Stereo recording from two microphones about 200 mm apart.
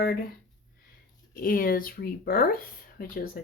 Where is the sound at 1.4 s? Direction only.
45° left (ahead or behind).